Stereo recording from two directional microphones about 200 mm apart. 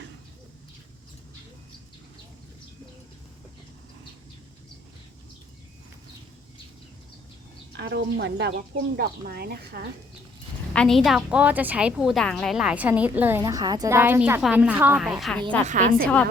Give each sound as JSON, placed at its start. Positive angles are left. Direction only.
{"t": 7.8, "sound": "speech", "side_deg": -55}
{"t": 10.8, "sound": "a woman's voice", "side_deg": 0}
{"t": 15.6, "sound": "a woman's voice", "side_deg": -40}